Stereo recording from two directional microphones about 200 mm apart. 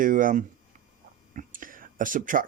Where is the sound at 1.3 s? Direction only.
45° right (ahead or behind).